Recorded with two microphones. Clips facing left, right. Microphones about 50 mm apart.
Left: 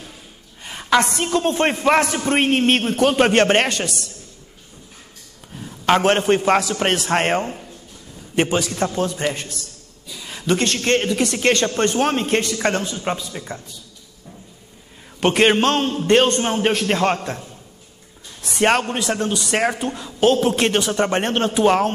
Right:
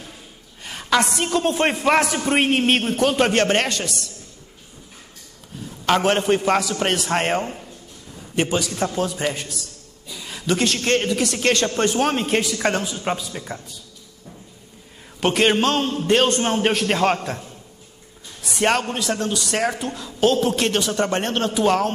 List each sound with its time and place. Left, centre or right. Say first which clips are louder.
0.7 s a man's voice: left 2 dB; centre
3.0 s a man's voice: left 5 dB; centre
5.9 s a man's voice: left 2 dB; centre
10.2 s a sound: left 2 dB; centre
10.8 s a man's voice: left 1 dB; centre
15.1 s a man's voice: left 2 dB; centre
18.6 s a man's voice: left 2 dB; centre